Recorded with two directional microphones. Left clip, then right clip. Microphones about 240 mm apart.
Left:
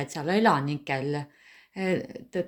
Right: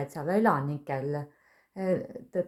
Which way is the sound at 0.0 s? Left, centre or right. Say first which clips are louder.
Left 2 dB; left.